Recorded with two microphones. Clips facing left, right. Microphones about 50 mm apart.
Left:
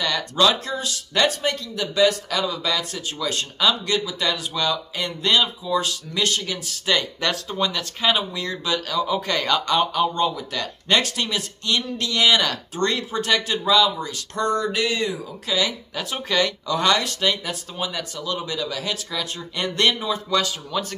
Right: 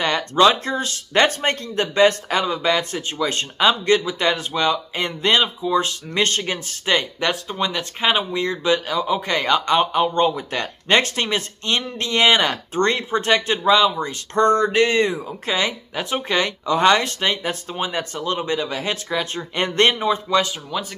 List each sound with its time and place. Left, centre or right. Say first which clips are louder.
0.0 s speech: right 4 dB; right
6.9 s speech: right 2 dB; right
20.2 s speech: right 1 dB; right